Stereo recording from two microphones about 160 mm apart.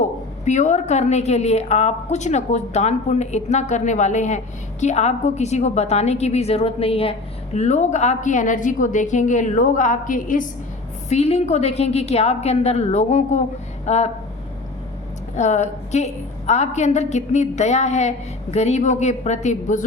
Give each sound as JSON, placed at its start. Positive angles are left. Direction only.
{"t": 0.4, "sound": "a woman's voice", "side_deg": 50}
{"t": 11.1, "sound": "a woman's voice", "side_deg": 40}
{"t": 15.4, "sound": "a woman's voice", "side_deg": 50}